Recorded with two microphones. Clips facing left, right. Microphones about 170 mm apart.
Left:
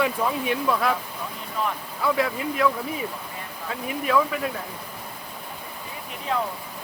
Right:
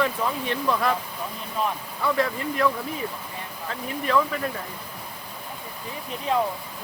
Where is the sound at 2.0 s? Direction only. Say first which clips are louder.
Left 1 dB; centre (ahead or behind).